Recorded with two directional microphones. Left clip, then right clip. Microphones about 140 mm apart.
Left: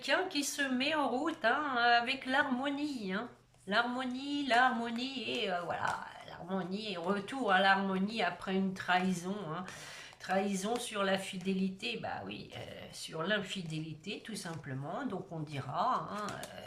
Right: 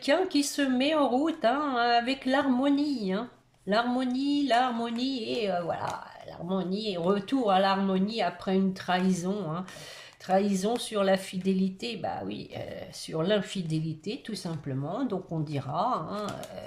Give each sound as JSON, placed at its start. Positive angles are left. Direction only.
{"t": 0.0, "sound": "speech", "side_deg": -40}